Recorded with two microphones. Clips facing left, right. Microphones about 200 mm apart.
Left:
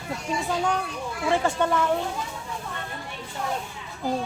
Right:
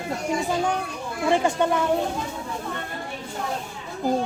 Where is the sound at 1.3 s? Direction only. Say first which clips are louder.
Right 2 dB; 15° right (ahead or behind).